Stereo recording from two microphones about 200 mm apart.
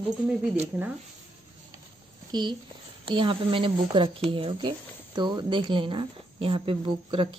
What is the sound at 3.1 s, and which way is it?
Speech, 25° right (ahead or behind).